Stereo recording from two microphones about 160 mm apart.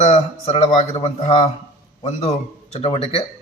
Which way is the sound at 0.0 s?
40° left (ahead or behind).